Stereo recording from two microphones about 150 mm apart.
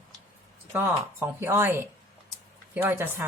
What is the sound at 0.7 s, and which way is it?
Speech, 15° right (ahead or behind).